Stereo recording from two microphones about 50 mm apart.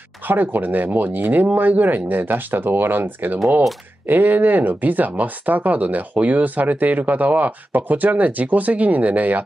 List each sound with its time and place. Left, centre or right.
0.3 s speech: right